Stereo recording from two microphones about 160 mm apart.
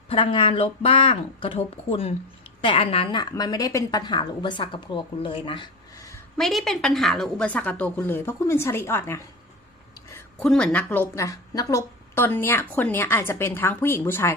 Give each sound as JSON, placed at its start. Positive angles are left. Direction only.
{"t": 0.1, "sound": "a woman's voice", "side_deg": 30}
{"t": 6.3, "sound": "a woman's voice", "side_deg": 0}
{"t": 10.4, "sound": "a woman's voice", "side_deg": 5}